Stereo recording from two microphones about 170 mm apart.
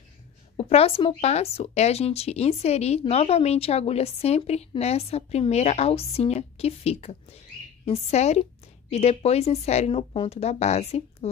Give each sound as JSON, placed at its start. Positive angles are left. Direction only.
{"t": 0.6, "sound": "speech", "side_deg": 35}